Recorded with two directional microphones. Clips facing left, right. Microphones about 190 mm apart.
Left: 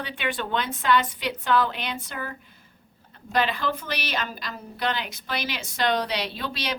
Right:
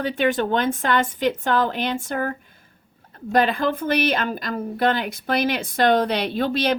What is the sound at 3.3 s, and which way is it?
Speech, 50° right (ahead or behind).